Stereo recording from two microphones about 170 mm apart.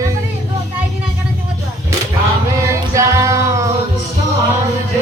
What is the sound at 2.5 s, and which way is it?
Music, 20° right (ahead or behind).